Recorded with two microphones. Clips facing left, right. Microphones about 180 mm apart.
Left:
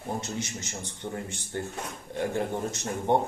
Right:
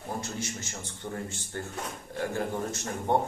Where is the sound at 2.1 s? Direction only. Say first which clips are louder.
Left 2 dB; 20° left (ahead or behind).